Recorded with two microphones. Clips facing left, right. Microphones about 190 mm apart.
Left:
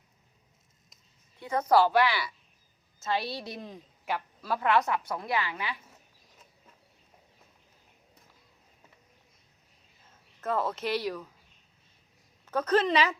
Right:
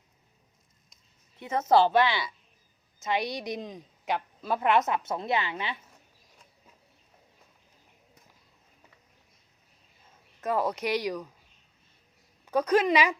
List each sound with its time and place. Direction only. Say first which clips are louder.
1.4 s a woman's voice: right 1 dB; 25° right (ahead or behind)
10.4 s speech: right 2 dB; 15° right (ahead or behind)
12.5 s speech: right 2 dB; 10° right (ahead or behind)